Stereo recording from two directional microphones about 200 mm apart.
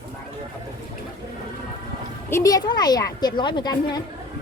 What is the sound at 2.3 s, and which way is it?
A woman's voice, 20° left (ahead or behind).